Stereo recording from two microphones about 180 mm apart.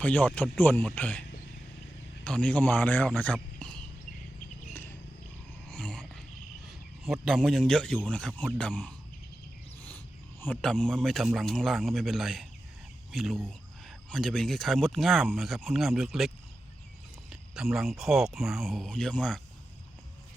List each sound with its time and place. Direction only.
0.0 s a man's voice: 10° left (ahead or behind)
2.2 s a man's voice: 5° left (ahead or behind)
5.7 s wild animals: 5° left (ahead or behind)
6.7 s speech: centre (ahead or behind)
10.4 s speech: 5° left (ahead or behind)